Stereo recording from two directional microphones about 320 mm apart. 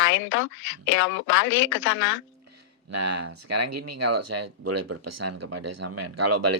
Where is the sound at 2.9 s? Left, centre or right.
Right.